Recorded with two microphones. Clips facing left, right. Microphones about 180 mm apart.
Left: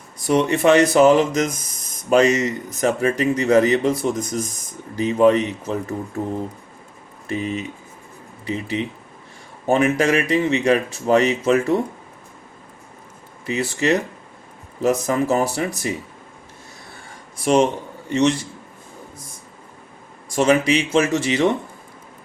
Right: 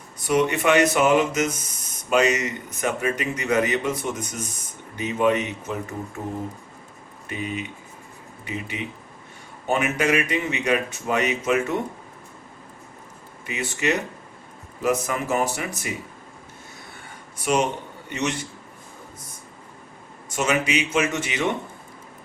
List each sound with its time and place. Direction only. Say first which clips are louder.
0.3 s speech: left 4 dB; 35° left (ahead or behind)
7.3 s speech: left 5 dB; 30° left (ahead or behind)
13.5 s speech: left 5 dB; 35° left (ahead or behind)
18.1 s speech: left 9 dB; 35° left (ahead or behind)
20.3 s speech: left 6 dB; 35° left (ahead or behind)